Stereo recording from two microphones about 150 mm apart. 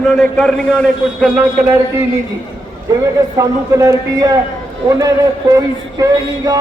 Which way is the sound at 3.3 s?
25° right (ahead or behind).